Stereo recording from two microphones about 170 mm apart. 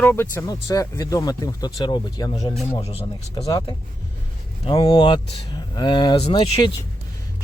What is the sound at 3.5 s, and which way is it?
Speech, 25° left (ahead or behind).